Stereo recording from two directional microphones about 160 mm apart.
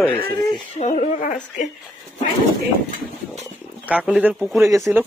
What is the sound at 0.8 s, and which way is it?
Speech, 45° left (ahead or behind).